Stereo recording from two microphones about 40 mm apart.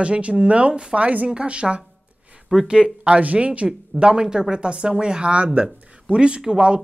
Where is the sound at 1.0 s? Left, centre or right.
Right.